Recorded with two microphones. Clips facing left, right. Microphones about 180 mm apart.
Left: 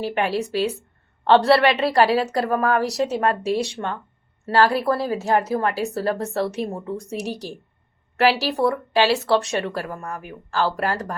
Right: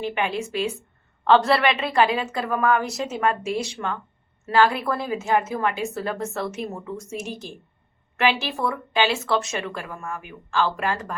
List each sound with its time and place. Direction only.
0.0 s a woman's voice: 40° left (ahead or behind)